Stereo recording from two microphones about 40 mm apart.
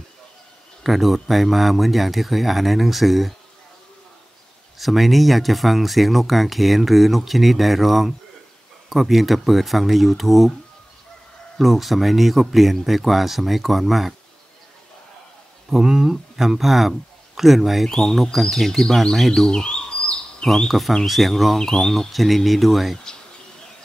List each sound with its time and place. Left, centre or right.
0.8 s speech: centre
4.7 s speech: centre
11.5 s speech: centre
15.7 s speech: centre
17.8 s speech: centre
19.5 s bird: left
20.4 s speech: centre